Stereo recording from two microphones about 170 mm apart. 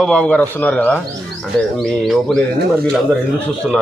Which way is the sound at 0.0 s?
5° left (ahead or behind).